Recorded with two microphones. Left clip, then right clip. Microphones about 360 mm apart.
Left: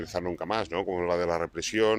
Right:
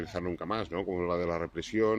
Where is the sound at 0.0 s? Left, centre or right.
Left.